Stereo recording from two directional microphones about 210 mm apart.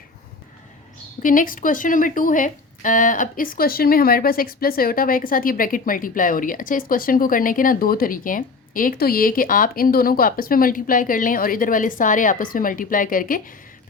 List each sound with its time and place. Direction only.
1.2 s speech: 40° left (ahead or behind)